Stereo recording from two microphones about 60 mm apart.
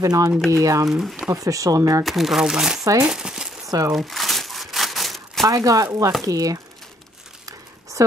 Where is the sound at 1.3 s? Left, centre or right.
Right.